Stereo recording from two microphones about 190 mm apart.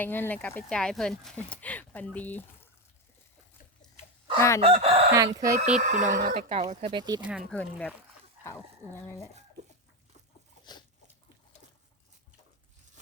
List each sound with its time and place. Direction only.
0.0 s speech: 10° left (ahead or behind)
4.4 s chicken: 15° left (ahead or behind)
4.6 s speech: 30° right (ahead or behind)
5.1 s speech: 20° right (ahead or behind)
5.5 s speech: 40° right (ahead or behind)
6.9 s speech: 20° right (ahead or behind)
7.2 s speech: 5° right (ahead or behind)
7.5 s speech: 5° left (ahead or behind)
8.4 s dog: 10° right (ahead or behind)